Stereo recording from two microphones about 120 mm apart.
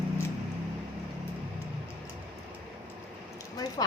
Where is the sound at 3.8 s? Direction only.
35° left (ahead or behind).